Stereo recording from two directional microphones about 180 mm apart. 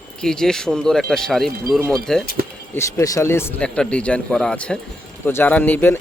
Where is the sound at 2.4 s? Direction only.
50° right (ahead or behind).